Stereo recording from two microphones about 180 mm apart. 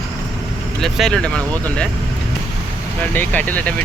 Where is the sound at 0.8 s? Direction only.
Centre (ahead or behind).